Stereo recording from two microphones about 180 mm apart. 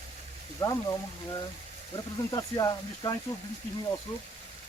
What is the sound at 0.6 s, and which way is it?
Speech, 15° left (ahead or behind).